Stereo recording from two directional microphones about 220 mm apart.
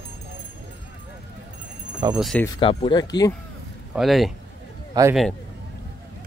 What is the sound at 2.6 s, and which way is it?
Speech, 25° left (ahead or behind).